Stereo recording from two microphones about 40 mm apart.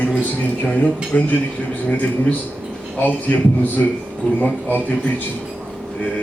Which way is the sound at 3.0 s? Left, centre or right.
Left.